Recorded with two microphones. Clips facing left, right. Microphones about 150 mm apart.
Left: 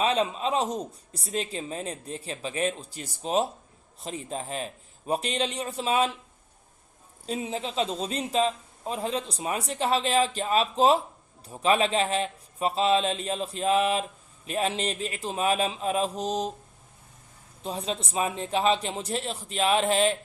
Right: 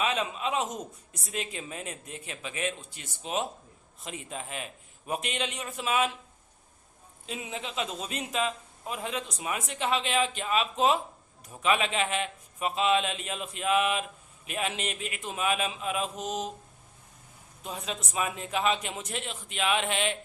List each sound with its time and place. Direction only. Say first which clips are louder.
0.0 s speech: left 4 dB; 35° left (ahead or behind)
7.3 s speech: left 6 dB; 35° left (ahead or behind)
17.6 s speech: left 5 dB; 30° left (ahead or behind)